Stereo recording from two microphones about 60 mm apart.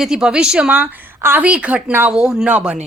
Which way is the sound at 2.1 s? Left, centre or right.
Centre.